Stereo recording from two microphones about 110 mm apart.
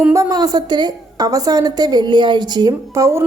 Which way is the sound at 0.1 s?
30° right (ahead or behind).